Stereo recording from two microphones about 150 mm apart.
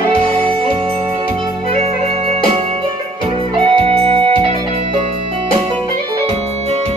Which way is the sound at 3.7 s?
35° right (ahead or behind).